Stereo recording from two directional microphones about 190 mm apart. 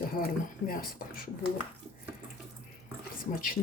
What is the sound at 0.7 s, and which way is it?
Speech, 50° left (ahead or behind).